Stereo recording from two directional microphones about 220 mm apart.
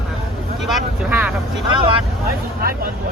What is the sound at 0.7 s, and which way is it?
Speech, 5° right (ahead or behind).